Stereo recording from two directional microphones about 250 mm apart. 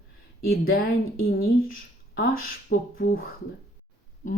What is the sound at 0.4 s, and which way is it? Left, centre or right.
Speech, left.